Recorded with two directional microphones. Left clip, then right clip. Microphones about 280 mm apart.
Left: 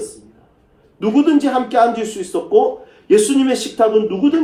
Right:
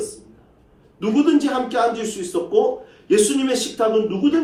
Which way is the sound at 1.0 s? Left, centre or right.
Left.